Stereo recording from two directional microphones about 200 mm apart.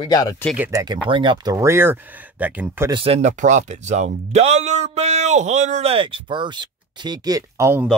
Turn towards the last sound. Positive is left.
turn(degrees=-15)  # may be behind; listen again after turning